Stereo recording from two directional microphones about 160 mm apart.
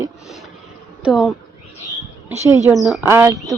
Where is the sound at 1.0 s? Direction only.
Centre (ahead or behind).